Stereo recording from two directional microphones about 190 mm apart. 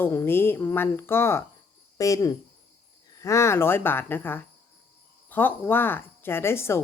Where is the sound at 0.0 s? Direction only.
10° left (ahead or behind).